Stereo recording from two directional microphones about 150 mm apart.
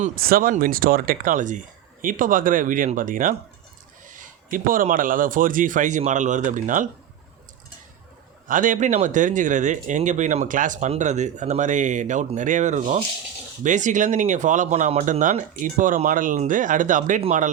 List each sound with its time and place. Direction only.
0.2 s speech: 75° right (ahead or behind); by 6.8 s 60° right (ahead or behind)
8.4 s speech: 60° right (ahead or behind)